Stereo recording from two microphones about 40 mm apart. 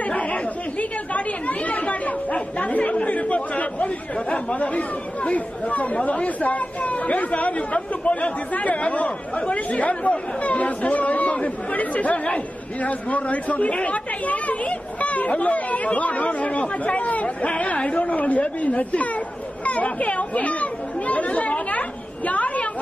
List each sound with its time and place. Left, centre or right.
0.1 s speech: left